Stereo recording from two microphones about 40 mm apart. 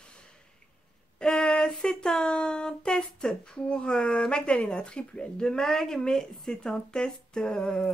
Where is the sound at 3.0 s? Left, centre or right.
Centre.